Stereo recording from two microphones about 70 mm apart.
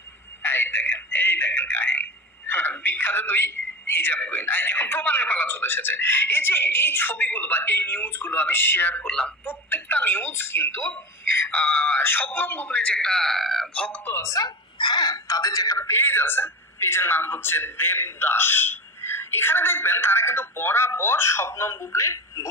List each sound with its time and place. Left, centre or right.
0.4 s speech: left
9.0 s speech: centre
9.4 s a woman's voice: left
13.1 s speech: centre
14.0 s speech: left
14.4 s a sound: left
15.2 s speech: left
15.8 s a man's voice: left